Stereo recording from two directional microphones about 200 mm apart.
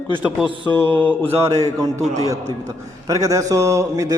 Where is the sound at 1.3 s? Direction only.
15° right (ahead or behind).